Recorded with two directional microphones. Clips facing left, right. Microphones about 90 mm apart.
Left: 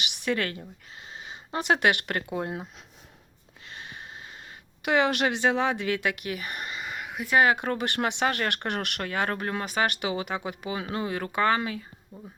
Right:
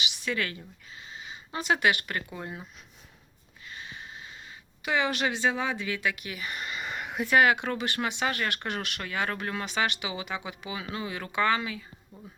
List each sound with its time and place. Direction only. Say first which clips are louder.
0.3 s speech: left 4 dB; 50° left (ahead or behind)
3.8 s sniff: left 1 dB; 55° left (ahead or behind)
4.9 s speech: left 4 dB; 60° left (ahead or behind)
6.7 s a sound: right 2 dB; 5° left (ahead or behind)
7.3 s speech: left 1 dB; 35° left (ahead or behind)